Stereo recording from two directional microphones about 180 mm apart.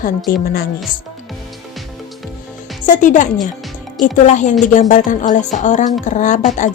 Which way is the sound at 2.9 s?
45° left (ahead or behind).